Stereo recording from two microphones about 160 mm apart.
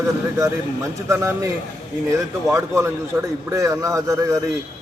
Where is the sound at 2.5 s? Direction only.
15° right (ahead or behind).